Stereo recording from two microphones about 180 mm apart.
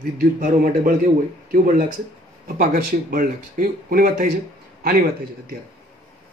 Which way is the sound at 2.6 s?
65° right (ahead or behind).